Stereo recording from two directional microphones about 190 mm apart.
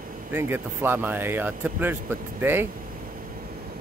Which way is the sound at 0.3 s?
10° right (ahead or behind).